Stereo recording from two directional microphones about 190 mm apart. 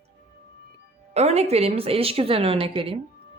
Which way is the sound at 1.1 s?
35° right (ahead or behind).